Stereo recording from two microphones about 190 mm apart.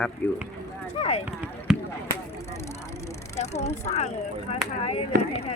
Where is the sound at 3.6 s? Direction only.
35° left (ahead or behind).